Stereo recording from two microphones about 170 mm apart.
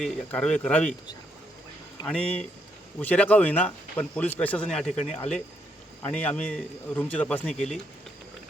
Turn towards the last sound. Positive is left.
turn(degrees=5)  # may be behind; listen again after turning